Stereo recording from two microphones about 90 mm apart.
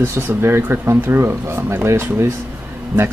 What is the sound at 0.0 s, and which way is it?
Speech, 25° right (ahead or behind).